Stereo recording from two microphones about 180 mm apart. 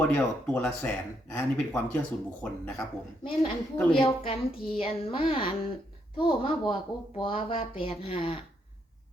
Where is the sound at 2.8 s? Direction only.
25° left (ahead or behind).